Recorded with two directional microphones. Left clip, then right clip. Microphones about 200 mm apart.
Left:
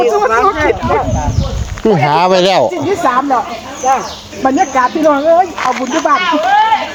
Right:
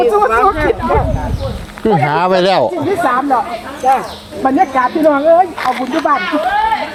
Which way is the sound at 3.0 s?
40° left (ahead or behind).